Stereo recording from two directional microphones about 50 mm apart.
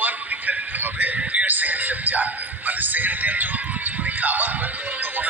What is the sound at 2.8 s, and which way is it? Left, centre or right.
Speech, right.